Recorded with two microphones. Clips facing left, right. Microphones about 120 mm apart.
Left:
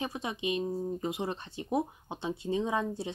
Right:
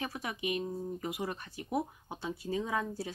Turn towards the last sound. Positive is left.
turn(degrees=25)  # may be behind; listen again after turning